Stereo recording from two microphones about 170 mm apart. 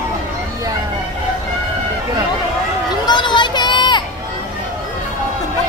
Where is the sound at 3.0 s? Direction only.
25° left (ahead or behind).